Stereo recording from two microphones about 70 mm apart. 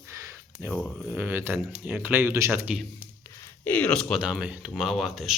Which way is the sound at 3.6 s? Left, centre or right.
Left.